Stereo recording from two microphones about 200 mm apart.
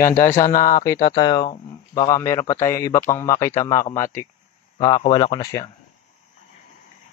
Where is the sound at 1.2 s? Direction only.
20° left (ahead or behind).